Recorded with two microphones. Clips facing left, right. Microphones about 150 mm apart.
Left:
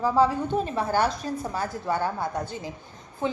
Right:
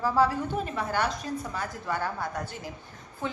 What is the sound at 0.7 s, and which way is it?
A woman's voice, 35° left (ahead or behind).